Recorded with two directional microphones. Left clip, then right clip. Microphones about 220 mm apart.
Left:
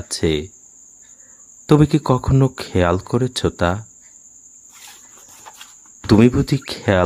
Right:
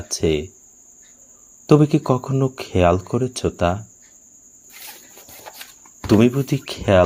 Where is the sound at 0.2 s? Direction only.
45° left (ahead or behind).